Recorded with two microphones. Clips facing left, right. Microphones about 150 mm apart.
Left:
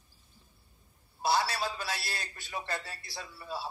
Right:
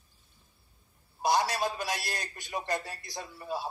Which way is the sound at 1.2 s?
15° right (ahead or behind).